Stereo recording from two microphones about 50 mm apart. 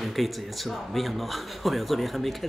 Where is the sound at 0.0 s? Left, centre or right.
Centre.